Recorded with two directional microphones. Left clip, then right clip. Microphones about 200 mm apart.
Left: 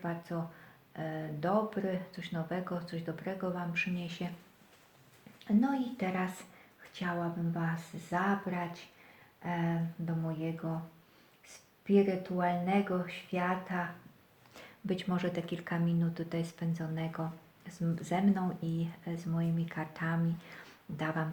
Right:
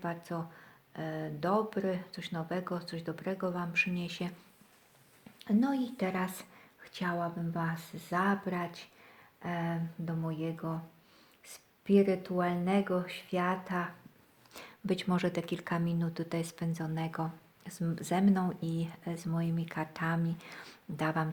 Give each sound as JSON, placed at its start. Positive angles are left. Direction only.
{"t": 0.0, "sound": "a sound", "side_deg": -45}
{"t": 0.9, "sound": "speech", "side_deg": -45}
{"t": 5.4, "sound": "speech", "side_deg": -45}